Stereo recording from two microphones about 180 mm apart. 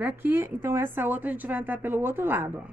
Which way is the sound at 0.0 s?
10° right (ahead or behind).